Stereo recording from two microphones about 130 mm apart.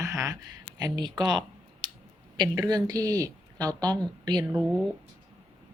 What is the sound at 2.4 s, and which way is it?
Speech, 30° right (ahead or behind).